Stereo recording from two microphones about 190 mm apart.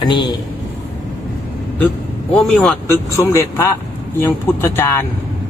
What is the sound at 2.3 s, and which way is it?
Speech, 5° left (ahead or behind).